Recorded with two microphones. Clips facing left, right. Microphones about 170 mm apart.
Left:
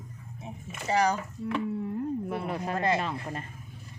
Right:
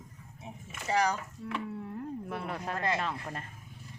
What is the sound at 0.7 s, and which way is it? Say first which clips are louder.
Speech: left 3 dB; 30° left (ahead or behind).